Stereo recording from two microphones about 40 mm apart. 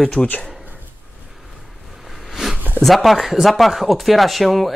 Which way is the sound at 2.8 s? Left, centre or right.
Centre.